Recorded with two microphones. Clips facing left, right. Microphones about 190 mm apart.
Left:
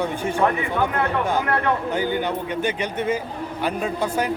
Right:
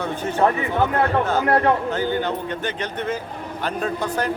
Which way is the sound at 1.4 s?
35° right (ahead or behind).